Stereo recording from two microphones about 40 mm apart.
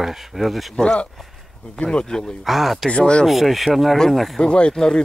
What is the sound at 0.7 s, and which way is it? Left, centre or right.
Speech, centre.